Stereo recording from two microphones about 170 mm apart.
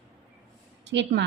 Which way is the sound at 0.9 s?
90° right.